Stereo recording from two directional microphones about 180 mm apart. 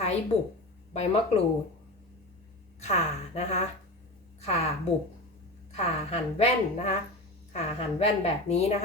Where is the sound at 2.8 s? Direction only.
40° left (ahead or behind).